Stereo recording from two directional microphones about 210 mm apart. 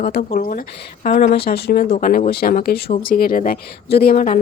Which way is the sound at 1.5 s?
50° left (ahead or behind).